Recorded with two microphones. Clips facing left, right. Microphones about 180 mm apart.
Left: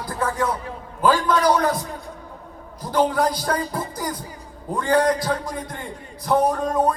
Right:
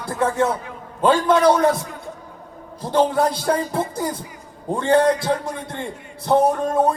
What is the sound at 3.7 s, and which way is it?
Music, 25° right (ahead or behind).